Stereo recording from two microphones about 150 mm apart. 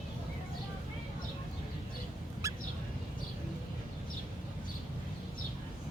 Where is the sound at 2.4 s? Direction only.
20° right (ahead or behind).